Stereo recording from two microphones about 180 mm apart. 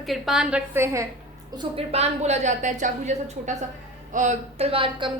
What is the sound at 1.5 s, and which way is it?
A woman's voice, 35° right (ahead or behind).